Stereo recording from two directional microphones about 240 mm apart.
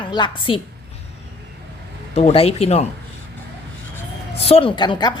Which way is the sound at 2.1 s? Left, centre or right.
Left.